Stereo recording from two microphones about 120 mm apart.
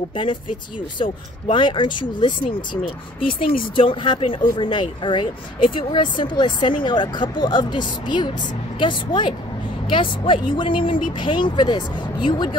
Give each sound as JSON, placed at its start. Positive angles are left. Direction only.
{"t": 0.1, "sound": "speech", "side_deg": 45}